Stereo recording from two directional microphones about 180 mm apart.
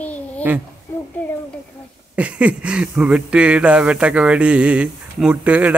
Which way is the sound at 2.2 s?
5° right (ahead or behind).